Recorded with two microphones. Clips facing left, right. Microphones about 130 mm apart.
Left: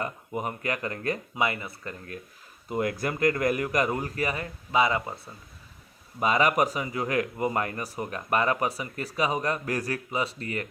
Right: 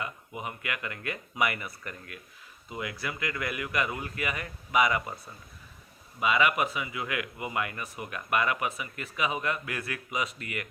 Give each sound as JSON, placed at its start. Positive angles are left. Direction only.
{"t": 0.0, "sound": "speech", "side_deg": 40}
{"t": 2.6, "sound": "speech", "side_deg": 45}
{"t": 6.1, "sound": "speech", "side_deg": 40}